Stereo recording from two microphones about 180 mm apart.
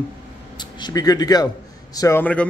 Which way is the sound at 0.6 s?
25° left (ahead or behind).